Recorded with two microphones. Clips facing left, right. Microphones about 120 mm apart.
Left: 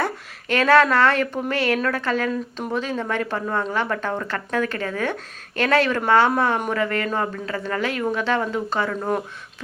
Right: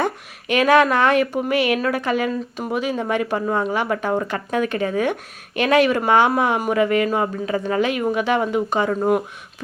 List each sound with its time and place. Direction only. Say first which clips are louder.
0.0 s speech: right 3 dB; 15° right (ahead or behind)